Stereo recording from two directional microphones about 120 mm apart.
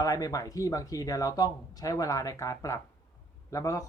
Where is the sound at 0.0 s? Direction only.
30° left (ahead or behind).